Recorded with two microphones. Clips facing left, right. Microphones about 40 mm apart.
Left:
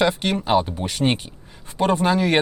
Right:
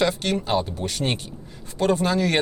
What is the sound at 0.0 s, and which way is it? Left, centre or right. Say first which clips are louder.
Speech: left 2 dB; centre.